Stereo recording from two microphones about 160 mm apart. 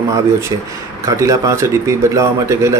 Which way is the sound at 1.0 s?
20° right (ahead or behind).